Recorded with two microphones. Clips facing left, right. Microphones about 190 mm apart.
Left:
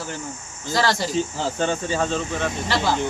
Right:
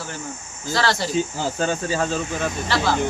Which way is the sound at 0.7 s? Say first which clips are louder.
Even; 15° left (ahead or behind).